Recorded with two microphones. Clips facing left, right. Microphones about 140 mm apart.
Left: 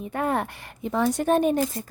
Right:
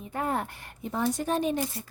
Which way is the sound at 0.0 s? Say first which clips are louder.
Left 4 dB; 70° left (ahead or behind).